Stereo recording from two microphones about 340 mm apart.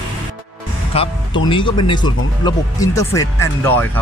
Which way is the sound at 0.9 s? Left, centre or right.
Centre.